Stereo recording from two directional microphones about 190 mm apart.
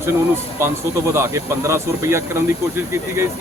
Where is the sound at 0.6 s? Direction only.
15° right (ahead or behind).